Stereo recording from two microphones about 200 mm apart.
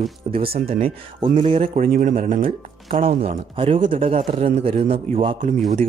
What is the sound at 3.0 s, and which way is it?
A man's voice, 30° right (ahead or behind).